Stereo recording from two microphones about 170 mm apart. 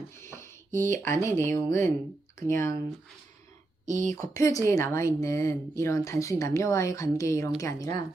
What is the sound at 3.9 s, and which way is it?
Speech, 45° right (ahead or behind).